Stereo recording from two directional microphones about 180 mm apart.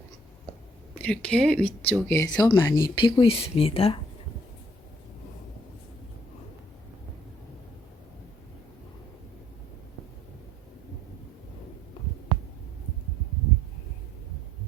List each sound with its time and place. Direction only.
0.9 s speech: 5° left (ahead or behind); by 3.9 s 30° left (ahead or behind)